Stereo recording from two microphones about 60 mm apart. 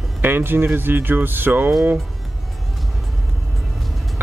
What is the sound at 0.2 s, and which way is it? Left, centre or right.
Speech, right.